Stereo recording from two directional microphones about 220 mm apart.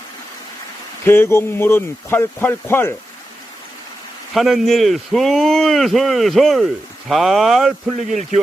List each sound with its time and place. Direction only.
1.0 s speech: 10° left (ahead or behind)
4.4 s speech: centre (ahead or behind)
7.9 s a man's voice: 35° right (ahead or behind)